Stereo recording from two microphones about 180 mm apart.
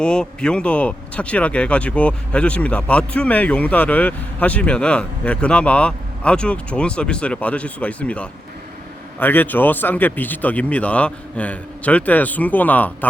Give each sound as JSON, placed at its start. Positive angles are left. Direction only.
{"t": 0.0, "sound": "speech", "side_deg": 5}